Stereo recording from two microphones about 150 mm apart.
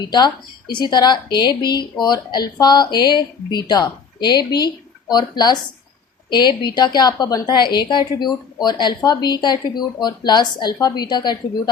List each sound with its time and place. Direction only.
0.7 s speech: 30° left (ahead or behind)